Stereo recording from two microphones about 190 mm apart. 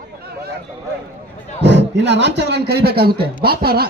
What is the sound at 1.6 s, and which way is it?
A man's voice, 65° right (ahead or behind).